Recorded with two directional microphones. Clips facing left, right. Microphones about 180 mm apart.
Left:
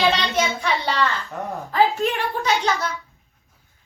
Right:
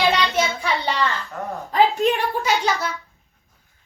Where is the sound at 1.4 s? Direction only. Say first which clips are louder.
Even; 20° left (ahead or behind).